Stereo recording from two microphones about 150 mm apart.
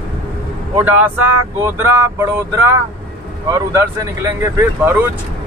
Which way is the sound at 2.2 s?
20° right (ahead or behind).